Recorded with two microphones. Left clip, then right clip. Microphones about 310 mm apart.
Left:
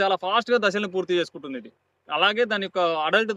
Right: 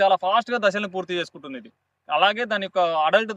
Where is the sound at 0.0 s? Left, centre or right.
Centre.